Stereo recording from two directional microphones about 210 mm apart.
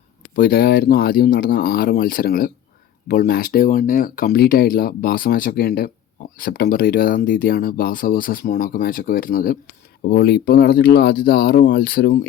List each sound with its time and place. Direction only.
0.3 s speech: 45° left (ahead or behind)